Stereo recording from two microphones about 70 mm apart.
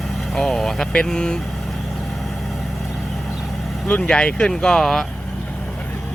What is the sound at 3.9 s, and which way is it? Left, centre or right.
Speech, centre.